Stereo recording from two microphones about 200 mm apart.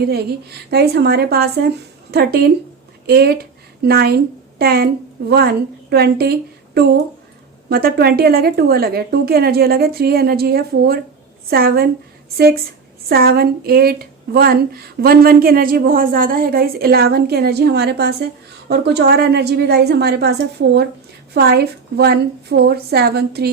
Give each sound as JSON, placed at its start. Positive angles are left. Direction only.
{"t": 0.0, "sound": "a woman's voice", "side_deg": -55}
{"t": 7.7, "sound": "speech", "side_deg": -50}
{"t": 13.1, "sound": "a woman's voice", "side_deg": -50}